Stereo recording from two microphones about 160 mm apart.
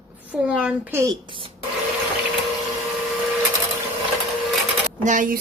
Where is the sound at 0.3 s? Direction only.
5° right (ahead or behind).